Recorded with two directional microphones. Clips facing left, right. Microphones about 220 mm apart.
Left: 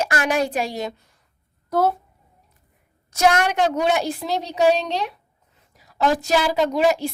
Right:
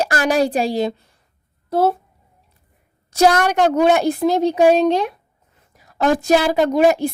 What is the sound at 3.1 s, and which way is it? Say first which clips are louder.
A woman's voice: right 4 dB; 35° right (ahead or behind).